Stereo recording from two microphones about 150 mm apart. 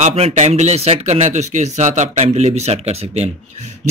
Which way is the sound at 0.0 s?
50° right (ahead or behind).